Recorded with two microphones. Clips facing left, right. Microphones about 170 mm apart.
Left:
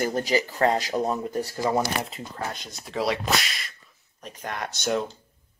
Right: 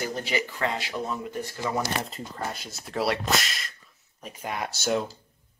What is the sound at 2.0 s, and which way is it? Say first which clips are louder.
Speech: left 1 dB; centre (ahead or behind).